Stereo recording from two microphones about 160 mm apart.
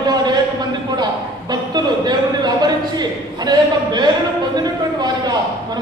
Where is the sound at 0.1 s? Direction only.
25° right (ahead or behind).